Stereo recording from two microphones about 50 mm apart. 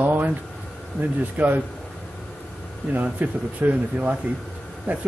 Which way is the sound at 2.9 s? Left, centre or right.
Right.